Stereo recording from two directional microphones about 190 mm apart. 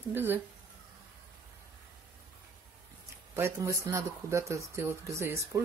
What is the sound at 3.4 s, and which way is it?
Speech, 15° right (ahead or behind).